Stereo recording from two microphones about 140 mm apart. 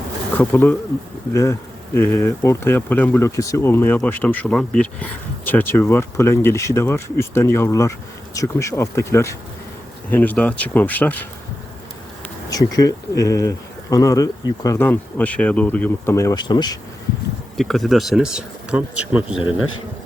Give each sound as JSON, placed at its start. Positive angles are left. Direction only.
{"t": 1.3, "sound": "speech", "side_deg": 20}
{"t": 12.5, "sound": "speech", "side_deg": 25}
{"t": 16.1, "sound": "speech", "side_deg": 25}
{"t": 17.6, "sound": "speech", "side_deg": 0}